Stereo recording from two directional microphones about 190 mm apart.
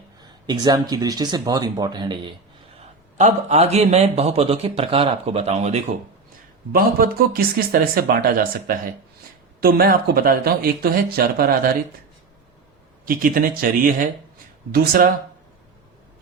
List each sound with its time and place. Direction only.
0.2 s speech: 20° right (ahead or behind)
3.2 s speech: 35° right (ahead or behind)
6.7 s speech: 50° right (ahead or behind)
13.1 s speech: 50° right (ahead or behind)